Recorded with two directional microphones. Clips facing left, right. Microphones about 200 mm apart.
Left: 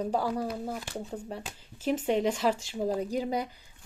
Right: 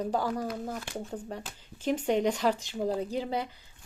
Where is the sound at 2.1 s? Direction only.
5° left (ahead or behind).